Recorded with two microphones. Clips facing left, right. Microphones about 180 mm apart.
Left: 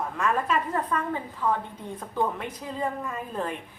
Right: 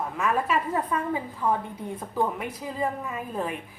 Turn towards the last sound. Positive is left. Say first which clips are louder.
# right 1 dB
turn(degrees=-5)  # may be behind; listen again after turning